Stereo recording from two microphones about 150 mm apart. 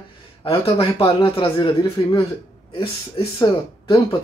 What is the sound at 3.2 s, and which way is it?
Speech, 35° left (ahead or behind).